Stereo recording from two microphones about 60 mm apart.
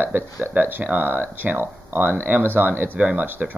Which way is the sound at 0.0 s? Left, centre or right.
Right.